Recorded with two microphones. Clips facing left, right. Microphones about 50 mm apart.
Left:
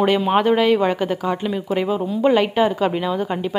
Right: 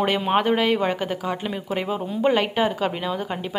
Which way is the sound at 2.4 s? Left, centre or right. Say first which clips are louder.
Left 4 dB; centre.